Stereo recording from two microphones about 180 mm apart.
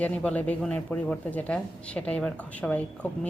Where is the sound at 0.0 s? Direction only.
5° left (ahead or behind).